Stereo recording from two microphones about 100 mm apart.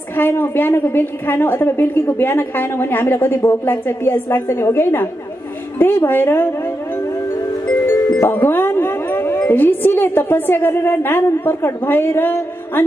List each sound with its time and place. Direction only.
0.1 s a woman's voice: 20° left (ahead or behind)
7.8 s speech: 25° left (ahead or behind)